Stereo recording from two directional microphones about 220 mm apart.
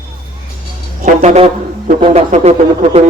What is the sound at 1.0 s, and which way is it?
Speech, 30° right (ahead or behind).